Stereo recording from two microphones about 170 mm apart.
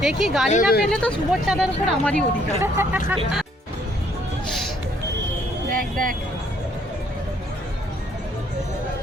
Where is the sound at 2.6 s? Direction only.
15° right (ahead or behind).